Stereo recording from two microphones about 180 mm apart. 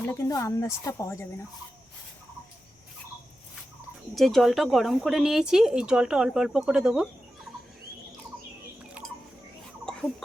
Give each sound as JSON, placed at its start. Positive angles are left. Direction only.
{"t": 0.0, "sound": "speech", "side_deg": 15}
{"t": 4.1, "sound": "speech", "side_deg": 0}
{"t": 9.0, "sound": "a sound", "side_deg": -5}